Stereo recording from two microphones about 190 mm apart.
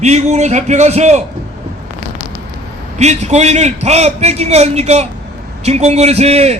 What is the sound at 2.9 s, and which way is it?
A man's voice, 35° right (ahead or behind).